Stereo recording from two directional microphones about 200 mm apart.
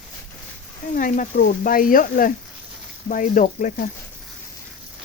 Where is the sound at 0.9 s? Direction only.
40° left (ahead or behind).